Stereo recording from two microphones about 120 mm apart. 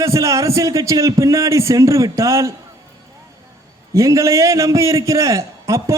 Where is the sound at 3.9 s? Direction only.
25° right (ahead or behind).